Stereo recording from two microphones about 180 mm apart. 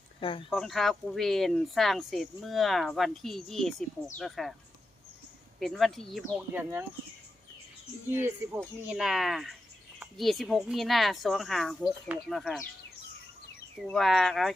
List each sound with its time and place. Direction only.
0.2 s speech: 30° left (ahead or behind)
0.5 s speech: centre (ahead or behind)
5.5 s speech: centre (ahead or behind)
6.6 s speech: 10° right (ahead or behind)
8.2 s speech: 10° right (ahead or behind)
13.8 s speech: centre (ahead or behind)